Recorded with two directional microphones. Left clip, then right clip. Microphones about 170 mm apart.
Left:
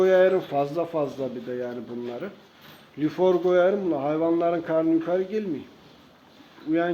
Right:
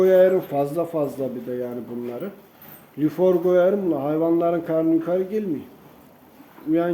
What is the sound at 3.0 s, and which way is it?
A man's voice, 25° right (ahead or behind).